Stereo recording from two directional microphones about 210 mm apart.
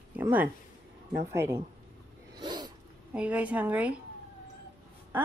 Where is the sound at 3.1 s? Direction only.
5° right (ahead or behind).